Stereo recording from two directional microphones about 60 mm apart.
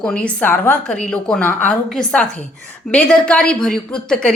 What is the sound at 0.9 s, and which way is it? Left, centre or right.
Speech, centre.